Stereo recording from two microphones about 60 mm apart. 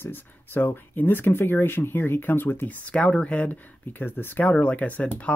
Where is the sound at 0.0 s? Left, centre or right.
Left.